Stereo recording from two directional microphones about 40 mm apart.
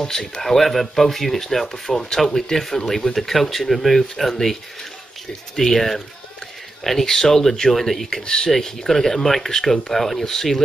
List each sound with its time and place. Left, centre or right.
0.0 s speech: centre
5.6 s speech: centre
8.1 s speech: centre